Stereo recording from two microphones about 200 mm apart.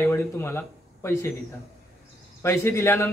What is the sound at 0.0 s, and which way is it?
Speech, 10° left (ahead or behind).